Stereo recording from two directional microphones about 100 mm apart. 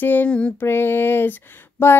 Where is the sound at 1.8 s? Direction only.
20° left (ahead or behind).